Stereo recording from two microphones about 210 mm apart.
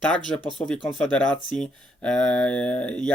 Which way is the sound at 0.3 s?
10° left (ahead or behind).